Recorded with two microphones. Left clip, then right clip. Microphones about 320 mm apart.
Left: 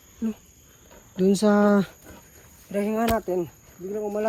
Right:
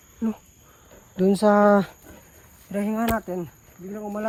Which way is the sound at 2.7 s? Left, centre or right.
Centre.